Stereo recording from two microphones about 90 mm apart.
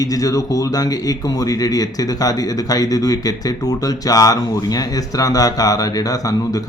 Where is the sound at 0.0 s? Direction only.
40° left (ahead or behind).